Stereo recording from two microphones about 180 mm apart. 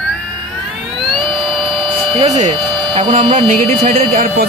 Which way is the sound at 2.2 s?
40° right (ahead or behind).